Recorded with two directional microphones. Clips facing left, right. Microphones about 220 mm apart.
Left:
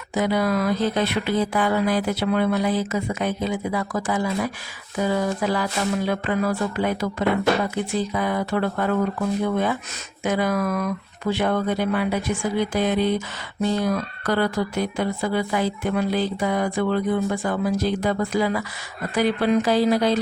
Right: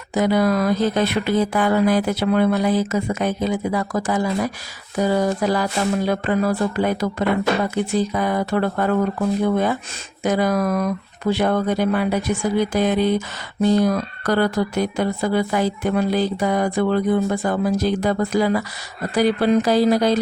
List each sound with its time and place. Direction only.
0.1 s speech: 45° right (ahead or behind)